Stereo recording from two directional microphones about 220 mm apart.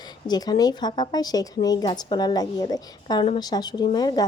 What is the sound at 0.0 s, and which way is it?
A woman's voice, 20° left (ahead or behind).